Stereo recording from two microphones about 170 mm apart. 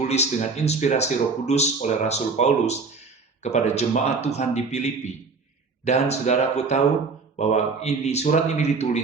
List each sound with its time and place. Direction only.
0.0 s speech: 40° left (ahead or behind)